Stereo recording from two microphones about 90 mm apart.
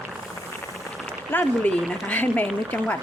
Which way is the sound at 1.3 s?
20° left (ahead or behind).